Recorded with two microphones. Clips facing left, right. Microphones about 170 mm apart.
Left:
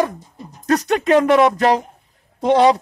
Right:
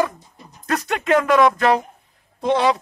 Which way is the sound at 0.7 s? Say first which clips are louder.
Left 4 dB; 40° left (ahead or behind).